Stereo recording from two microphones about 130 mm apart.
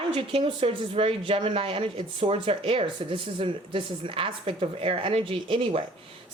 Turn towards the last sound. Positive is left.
turn(degrees=-40)  # may be behind; listen again after turning